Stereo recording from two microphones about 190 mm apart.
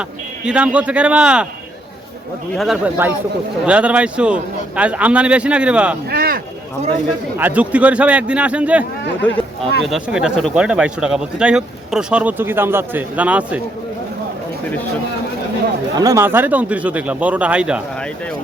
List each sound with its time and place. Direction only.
0.4 s speech: 5° right (ahead or behind)
2.6 s a man's voice: 5° right (ahead or behind)
6.1 s a sound: 50° right (ahead or behind)
7.3 s a man's voice: 10° right (ahead or behind)
9.8 s speech: centre (ahead or behind)
16.0 s a man's voice: 15° right (ahead or behind)